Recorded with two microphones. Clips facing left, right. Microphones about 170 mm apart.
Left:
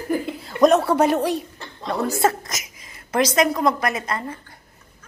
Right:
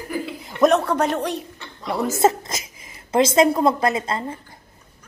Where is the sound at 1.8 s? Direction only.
20° right (ahead or behind).